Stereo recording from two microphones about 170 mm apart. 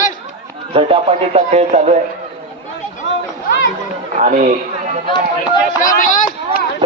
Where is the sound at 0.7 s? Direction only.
35° right (ahead or behind).